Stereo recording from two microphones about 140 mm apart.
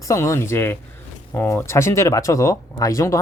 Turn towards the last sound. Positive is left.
turn(degrees=25)  # may be behind; listen again after turning